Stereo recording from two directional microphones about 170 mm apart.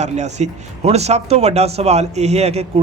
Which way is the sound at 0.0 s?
40° right (ahead or behind).